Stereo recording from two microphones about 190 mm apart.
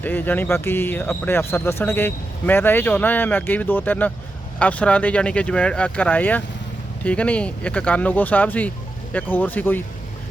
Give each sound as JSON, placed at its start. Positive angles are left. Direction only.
{"t": 0.0, "sound": "speech", "side_deg": 10}